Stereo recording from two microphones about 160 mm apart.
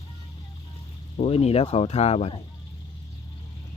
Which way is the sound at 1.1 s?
40° left (ahead or behind).